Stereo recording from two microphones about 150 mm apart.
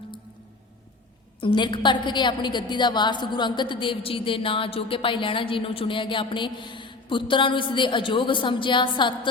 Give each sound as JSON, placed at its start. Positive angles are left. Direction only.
{"t": 1.4, "sound": "a woman's voice", "side_deg": 35}